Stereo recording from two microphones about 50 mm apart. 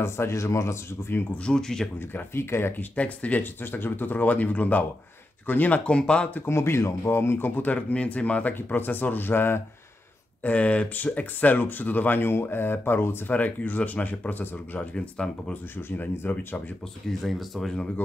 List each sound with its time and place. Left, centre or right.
0.0 s speech: left
1.4 s speech: centre
2.0 s speech: left
2.8 s speech: left
3.6 s speech: left
5.9 s speech: centre
6.4 s speech: left
7.9 s speech: left
8.5 s speech: left
10.4 s speech: left
13.3 s speech: left
14.8 s speech: left
16.2 s speech: left
17.2 s speech: centre